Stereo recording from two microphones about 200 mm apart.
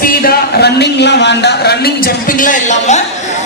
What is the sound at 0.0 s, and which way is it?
Speech, 45° left (ahead or behind).